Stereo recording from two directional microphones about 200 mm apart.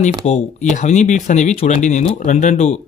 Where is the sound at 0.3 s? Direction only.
35° left (ahead or behind).